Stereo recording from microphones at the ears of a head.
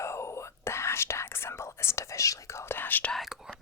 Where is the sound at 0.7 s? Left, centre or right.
Left.